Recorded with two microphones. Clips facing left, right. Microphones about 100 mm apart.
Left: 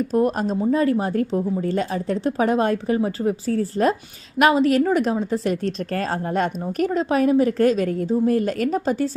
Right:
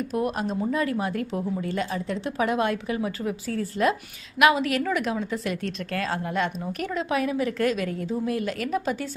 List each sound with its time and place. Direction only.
0.1 s a woman's voice: 40° left (ahead or behind)